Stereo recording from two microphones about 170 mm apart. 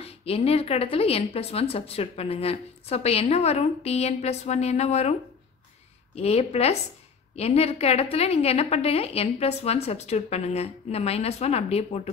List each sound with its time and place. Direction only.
0.0 s speech: 35° left (ahead or behind)
6.1 s speech: 40° left (ahead or behind)